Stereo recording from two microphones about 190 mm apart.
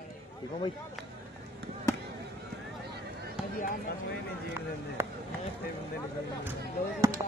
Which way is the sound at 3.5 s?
45° left (ahead or behind).